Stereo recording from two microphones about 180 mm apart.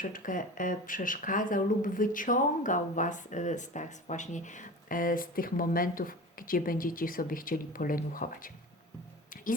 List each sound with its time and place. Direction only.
0.0 s speech: 50° left (ahead or behind)